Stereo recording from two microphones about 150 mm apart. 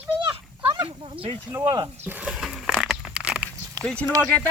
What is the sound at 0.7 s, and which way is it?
Snake, 35° right (ahead or behind).